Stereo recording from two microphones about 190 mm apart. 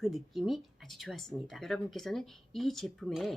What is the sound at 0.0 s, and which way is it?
Speech, centre (ahead or behind).